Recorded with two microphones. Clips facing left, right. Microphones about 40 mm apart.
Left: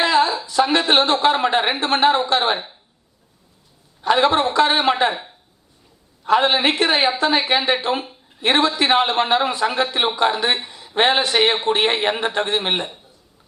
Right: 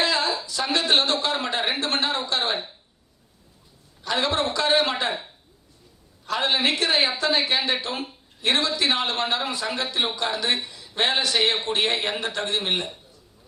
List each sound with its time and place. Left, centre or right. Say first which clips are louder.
0.0 s a sound: left 7 dB; left
0.4 s a man's voice: left 7 dB; left
4.0 s a man's voice: left 8 dB; left
6.2 s a man's voice: left 7 dB; left